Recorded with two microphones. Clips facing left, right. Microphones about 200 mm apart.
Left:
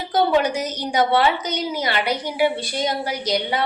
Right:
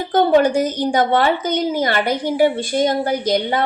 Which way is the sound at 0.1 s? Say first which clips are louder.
Right 5 dB; 50° right (ahead or behind).